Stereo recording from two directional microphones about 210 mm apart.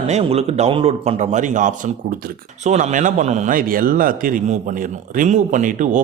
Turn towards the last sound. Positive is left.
turn(degrees=-40)  # may be behind; listen again after turning